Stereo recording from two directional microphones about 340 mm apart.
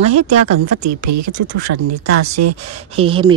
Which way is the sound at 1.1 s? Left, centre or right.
Right.